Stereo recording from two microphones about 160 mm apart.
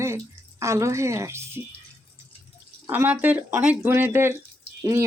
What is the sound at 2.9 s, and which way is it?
Speech, 10° right (ahead or behind).